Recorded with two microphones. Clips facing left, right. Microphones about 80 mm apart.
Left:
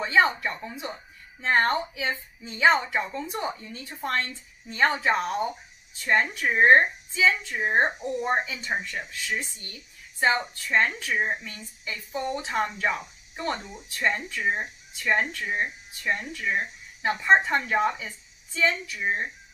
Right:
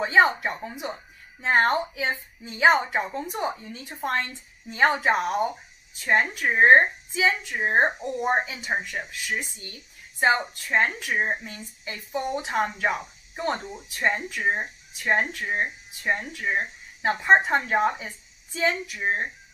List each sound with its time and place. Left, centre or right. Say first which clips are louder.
0.2 s speech: right 3 dB; right
6.2 s speech: right 1 dB; right
9.7 s a sound: right 1 dB; right
10.7 s speech: even; right
12.2 s speech: right 2 dB; centre